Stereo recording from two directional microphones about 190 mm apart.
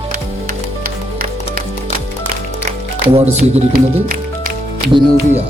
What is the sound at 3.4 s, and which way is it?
Music, 50° right (ahead or behind).